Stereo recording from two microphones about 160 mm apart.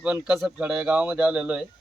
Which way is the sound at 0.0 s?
5° right (ahead or behind).